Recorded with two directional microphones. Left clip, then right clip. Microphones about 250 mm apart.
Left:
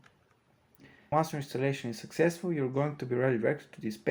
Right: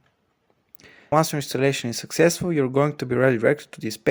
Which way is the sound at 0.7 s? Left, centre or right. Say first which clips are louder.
Right 9 dB; right.